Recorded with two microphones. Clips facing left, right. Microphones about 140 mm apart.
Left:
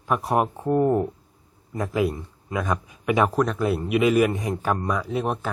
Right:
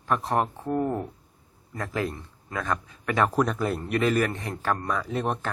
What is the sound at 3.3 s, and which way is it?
Speech, centre (ahead or behind).